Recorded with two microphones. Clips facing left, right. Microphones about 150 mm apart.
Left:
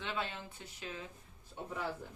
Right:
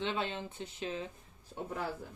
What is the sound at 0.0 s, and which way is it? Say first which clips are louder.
Speech: right 5 dB; 25° right (ahead or behind).